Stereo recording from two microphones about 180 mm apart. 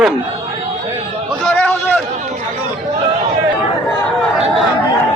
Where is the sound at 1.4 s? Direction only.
5° left (ahead or behind).